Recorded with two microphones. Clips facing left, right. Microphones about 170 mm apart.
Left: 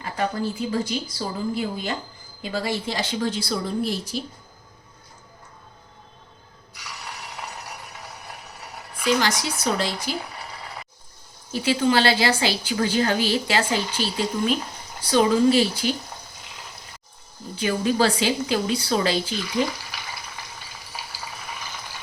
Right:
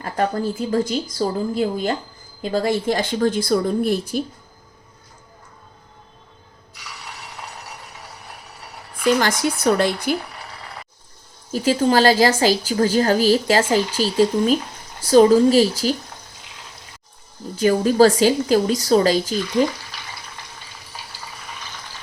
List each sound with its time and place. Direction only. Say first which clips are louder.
0.0 s a woman's voice: right 4 dB; 45° right (ahead or behind)
9.0 s a woman's voice: right 4 dB; 50° right (ahead or behind)
11.5 s a woman's voice: right 4 dB; 45° right (ahead or behind)
17.5 s a woman's voice: right 6 dB; 40° right (ahead or behind)